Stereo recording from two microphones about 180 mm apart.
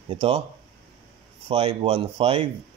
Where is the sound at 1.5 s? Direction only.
30° right (ahead or behind).